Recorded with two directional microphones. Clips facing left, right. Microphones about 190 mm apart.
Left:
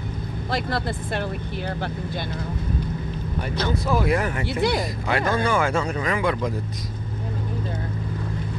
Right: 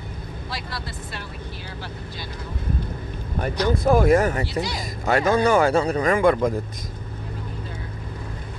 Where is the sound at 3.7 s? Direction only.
50° right (ahead or behind).